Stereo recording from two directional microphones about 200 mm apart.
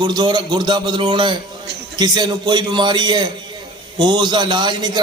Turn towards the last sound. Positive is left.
turn(degrees=-20)  # may be behind; listen again after turning